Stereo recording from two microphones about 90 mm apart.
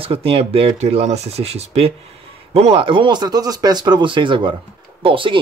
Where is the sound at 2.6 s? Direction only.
75° right (ahead or behind).